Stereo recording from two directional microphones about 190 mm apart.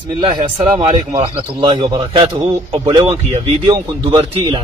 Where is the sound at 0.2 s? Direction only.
25° right (ahead or behind).